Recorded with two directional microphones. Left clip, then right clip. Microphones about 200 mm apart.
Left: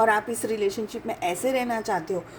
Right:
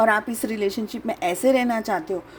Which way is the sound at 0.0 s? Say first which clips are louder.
Right 2 dB; 40° right (ahead or behind).